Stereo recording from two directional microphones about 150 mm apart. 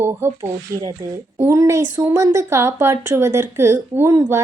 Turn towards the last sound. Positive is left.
turn(degrees=-15)  # may be behind; listen again after turning